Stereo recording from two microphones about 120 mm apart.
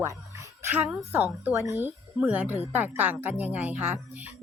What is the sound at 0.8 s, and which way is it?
A woman's voice, 10° right (ahead or behind).